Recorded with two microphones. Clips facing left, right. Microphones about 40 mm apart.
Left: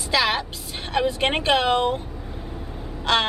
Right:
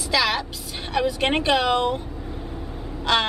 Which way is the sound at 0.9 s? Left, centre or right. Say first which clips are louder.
Even; centre.